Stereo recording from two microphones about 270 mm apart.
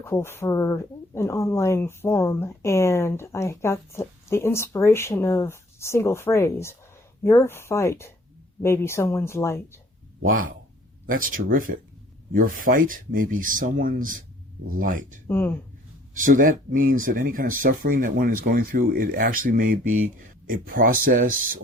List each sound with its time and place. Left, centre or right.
0.0 s speech: centre
10.2 s speech: right
15.3 s speech: centre
16.1 s speech: right